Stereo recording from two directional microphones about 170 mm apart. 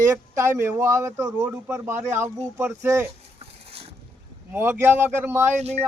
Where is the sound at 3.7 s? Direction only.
35° right (ahead or behind).